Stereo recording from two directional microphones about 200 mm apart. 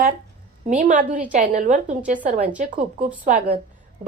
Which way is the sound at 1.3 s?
40° right (ahead or behind).